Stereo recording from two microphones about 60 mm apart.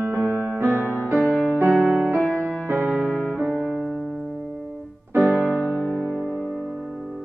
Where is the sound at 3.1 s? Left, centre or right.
Centre.